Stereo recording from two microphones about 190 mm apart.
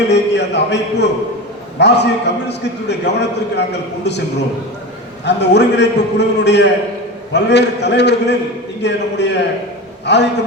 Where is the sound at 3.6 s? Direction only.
60° left (ahead or behind).